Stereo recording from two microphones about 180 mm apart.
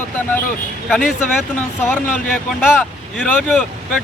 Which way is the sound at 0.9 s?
Centre (ahead or behind).